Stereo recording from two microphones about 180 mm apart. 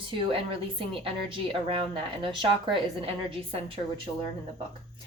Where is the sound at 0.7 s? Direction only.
30° right (ahead or behind).